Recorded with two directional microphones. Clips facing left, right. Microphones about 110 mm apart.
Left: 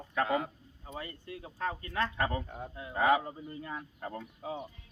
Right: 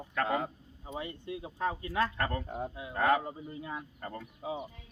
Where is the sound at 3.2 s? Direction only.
10° right (ahead or behind).